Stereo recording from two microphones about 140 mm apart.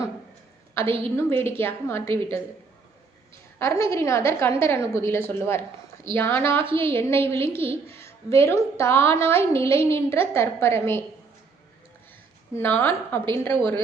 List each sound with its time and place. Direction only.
0.8 s a woman's voice: 15° left (ahead or behind)
3.6 s a woman's voice: 20° left (ahead or behind)
6.6 s a woman's voice: 40° right (ahead or behind)
6.9 s a woman's voice: 15° left (ahead or behind)
12.5 s a woman's voice: 15° left (ahead or behind)
13.6 s a woman's voice: 35° right (ahead or behind)